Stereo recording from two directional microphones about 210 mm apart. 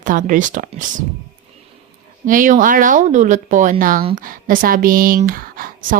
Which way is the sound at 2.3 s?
40° right (ahead or behind).